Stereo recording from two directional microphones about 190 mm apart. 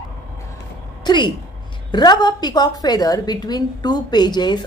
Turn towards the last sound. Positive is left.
turn(degrees=20)  # may be behind; listen again after turning